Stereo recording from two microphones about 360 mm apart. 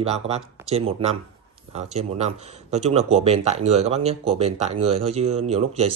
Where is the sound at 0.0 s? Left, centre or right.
Centre.